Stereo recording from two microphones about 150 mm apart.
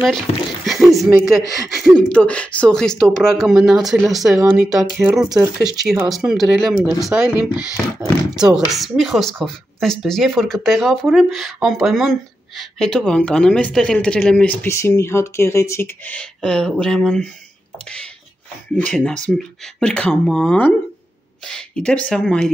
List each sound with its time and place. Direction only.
0.7 s speech: centre (ahead or behind)
1.1 s speech: 20° right (ahead or behind)
1.7 s speech: 5° right (ahead or behind)
2.0 s speech: 5° left (ahead or behind)
19.2 s speech: 5° left (ahead or behind)